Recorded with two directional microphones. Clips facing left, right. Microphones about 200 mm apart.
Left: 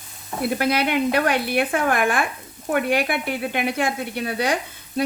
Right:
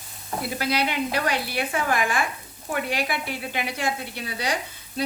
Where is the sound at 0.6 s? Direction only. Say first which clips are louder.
Left 4 dB; 55° left (ahead or behind).